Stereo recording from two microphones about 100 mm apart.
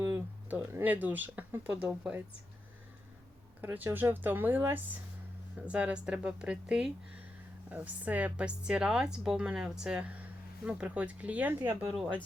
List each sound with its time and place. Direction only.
0.0 s speech: 25° right (ahead or behind)
3.6 s a woman's voice: 20° right (ahead or behind)